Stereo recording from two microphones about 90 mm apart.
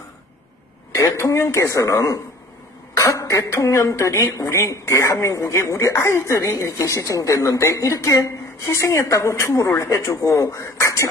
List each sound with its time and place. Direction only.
0.9 s speech: 35° left (ahead or behind)